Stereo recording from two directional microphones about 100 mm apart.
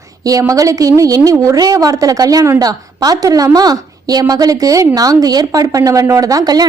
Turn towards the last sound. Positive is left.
turn(degrees=-40)  # may be behind; listen again after turning